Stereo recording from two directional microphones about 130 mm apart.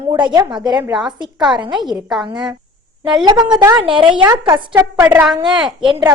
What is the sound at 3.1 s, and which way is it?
A woman's voice, 35° right (ahead or behind).